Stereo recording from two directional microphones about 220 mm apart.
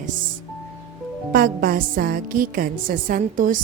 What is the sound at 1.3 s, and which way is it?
A woman's voice, 40° right (ahead or behind).